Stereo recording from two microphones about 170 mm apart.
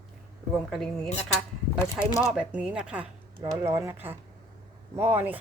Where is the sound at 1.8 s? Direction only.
15° left (ahead or behind).